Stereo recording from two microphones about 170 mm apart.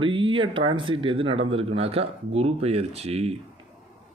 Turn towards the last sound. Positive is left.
turn(degrees=-40)  # may be behind; listen again after turning